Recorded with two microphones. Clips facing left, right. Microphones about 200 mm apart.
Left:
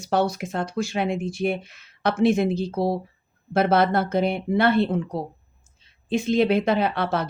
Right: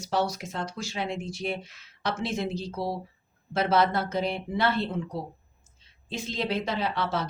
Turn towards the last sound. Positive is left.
turn(degrees=60)  # may be behind; listen again after turning